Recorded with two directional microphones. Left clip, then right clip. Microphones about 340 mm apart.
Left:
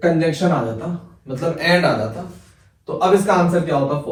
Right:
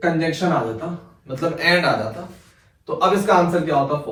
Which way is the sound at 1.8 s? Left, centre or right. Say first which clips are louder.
Left 1 dB; centre.